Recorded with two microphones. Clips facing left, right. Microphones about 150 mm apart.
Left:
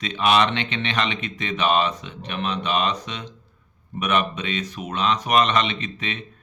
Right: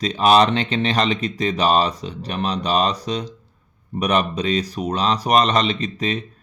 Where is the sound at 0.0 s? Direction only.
35° right (ahead or behind).